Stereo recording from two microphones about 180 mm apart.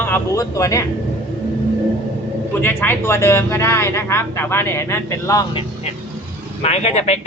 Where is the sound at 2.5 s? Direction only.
10° left (ahead or behind).